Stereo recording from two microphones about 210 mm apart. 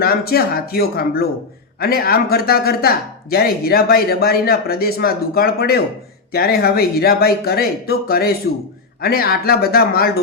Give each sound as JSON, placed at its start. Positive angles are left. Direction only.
{"t": 0.0, "sound": "speech", "side_deg": 45}